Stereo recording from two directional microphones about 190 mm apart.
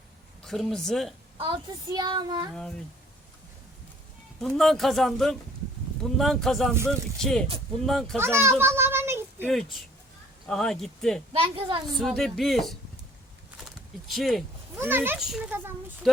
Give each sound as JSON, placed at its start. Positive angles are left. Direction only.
{"t": 0.4, "sound": "speech", "side_deg": 0}
{"t": 1.4, "sound": "a child's voice", "side_deg": -25}
{"t": 2.5, "sound": "speech", "side_deg": 5}
{"t": 4.4, "sound": "speech", "side_deg": 0}
{"t": 8.2, "sound": "a child's voice", "side_deg": -15}
{"t": 8.6, "sound": "child singing", "side_deg": -10}
{"t": 9.4, "sound": "speech", "side_deg": 0}
{"t": 11.3, "sound": "a child's voice", "side_deg": -25}
{"t": 11.9, "sound": "speech", "side_deg": 0}
{"t": 14.1, "sound": "speech", "side_deg": 0}
{"t": 14.8, "sound": "a child's voice", "side_deg": -10}